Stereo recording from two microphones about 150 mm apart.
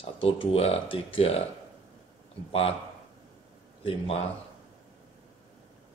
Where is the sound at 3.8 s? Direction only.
40° left (ahead or behind).